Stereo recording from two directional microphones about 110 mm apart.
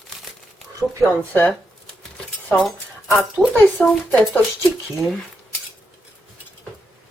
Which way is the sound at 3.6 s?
15° left (ahead or behind).